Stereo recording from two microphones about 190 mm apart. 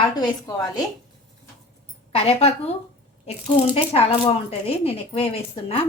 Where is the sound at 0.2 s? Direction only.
20° left (ahead or behind).